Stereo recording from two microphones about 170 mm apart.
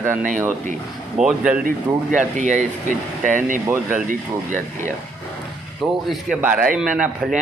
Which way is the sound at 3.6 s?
15° right (ahead or behind).